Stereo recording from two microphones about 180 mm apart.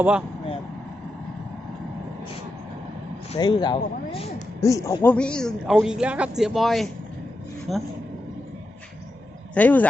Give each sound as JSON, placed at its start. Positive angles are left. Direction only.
{"t": 0.0, "sound": "speech", "side_deg": -5}
{"t": 3.3, "sound": "speech", "side_deg": 25}
{"t": 4.6, "sound": "speech", "side_deg": 20}
{"t": 5.1, "sound": "speech", "side_deg": 5}
{"t": 9.6, "sound": "speech", "side_deg": 10}